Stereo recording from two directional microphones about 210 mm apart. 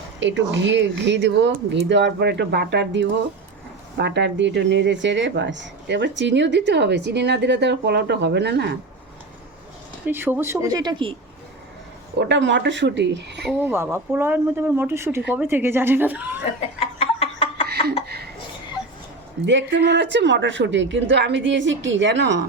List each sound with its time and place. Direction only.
0.2 s speech: 60° right (ahead or behind)
10.1 s speech: 10° right (ahead or behind)
12.2 s speech: 60° right (ahead or behind)
13.5 s speech: 10° right (ahead or behind)
16.6 s a sound: 30° left (ahead or behind)
17.7 s a sound: 50° right (ahead or behind)
19.5 s speech: 55° right (ahead or behind)